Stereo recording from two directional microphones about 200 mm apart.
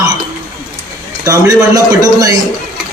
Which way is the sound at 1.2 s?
15° right (ahead or behind).